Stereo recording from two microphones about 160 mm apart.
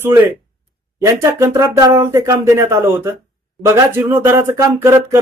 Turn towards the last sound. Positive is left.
turn(degrees=-15)  # may be behind; listen again after turning